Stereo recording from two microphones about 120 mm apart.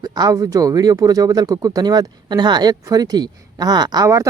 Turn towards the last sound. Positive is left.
turn(degrees=-30)  # may be behind; listen again after turning